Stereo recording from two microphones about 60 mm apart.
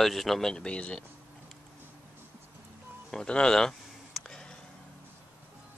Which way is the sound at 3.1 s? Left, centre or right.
Centre.